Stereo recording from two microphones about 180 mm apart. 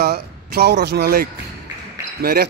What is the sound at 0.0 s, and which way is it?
Speech, 65° right (ahead or behind).